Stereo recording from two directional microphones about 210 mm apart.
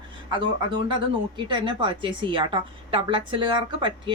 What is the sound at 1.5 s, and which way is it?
A woman's voice, 25° right (ahead or behind).